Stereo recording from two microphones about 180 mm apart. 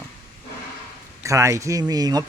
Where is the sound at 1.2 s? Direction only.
15° right (ahead or behind).